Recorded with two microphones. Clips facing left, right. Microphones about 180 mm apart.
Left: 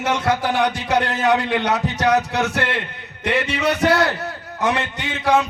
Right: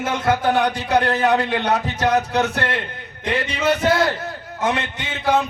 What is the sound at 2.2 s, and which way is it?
A man's voice, 75° left (ahead or behind).